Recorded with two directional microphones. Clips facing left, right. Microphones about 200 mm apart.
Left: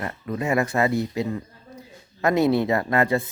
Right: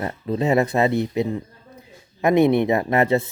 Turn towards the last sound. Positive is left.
turn(degrees=-25)  # may be behind; listen again after turning